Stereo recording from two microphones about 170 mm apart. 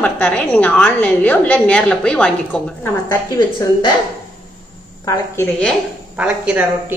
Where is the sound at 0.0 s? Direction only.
5° left (ahead or behind).